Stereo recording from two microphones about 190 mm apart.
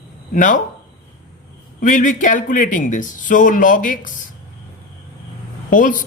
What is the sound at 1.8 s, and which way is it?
Speech, 45° left (ahead or behind).